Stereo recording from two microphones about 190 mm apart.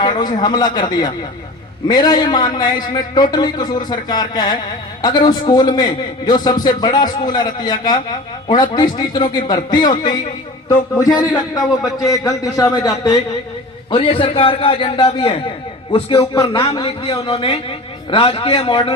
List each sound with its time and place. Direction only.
0.0 s a man's voice: 20° left (ahead or behind)